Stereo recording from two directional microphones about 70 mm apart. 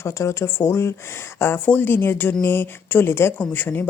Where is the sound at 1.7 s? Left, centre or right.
Left.